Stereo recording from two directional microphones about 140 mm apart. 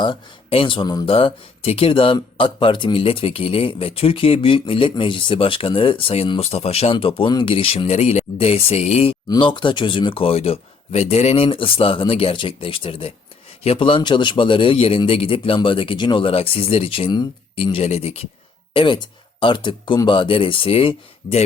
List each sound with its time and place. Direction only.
0.0 s speech: 40° left (ahead or behind)
9.3 s speech: 35° left (ahead or behind)